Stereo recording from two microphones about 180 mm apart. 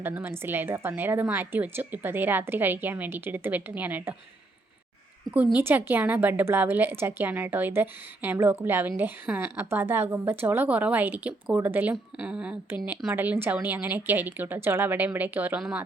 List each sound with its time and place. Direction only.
0.0 s a woman's voice: 10° right (ahead or behind)
5.5 s a woman's voice: 10° right (ahead or behind)